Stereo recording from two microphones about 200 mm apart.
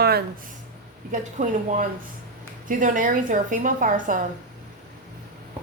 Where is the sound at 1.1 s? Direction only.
40° right (ahead or behind).